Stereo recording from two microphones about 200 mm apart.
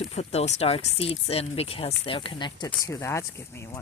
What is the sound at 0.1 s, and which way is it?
Speech, 30° left (ahead or behind).